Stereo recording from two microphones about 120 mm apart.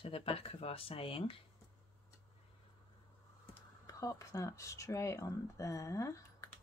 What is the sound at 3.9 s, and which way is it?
Speech, 30° left (ahead or behind).